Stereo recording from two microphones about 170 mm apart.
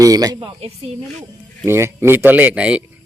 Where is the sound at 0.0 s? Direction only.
20° right (ahead or behind).